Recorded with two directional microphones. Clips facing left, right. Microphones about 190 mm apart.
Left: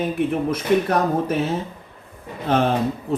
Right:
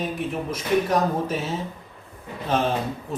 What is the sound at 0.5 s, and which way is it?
Speech, 60° left (ahead or behind).